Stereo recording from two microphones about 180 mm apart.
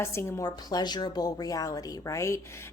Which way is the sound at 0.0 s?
15° left (ahead or behind).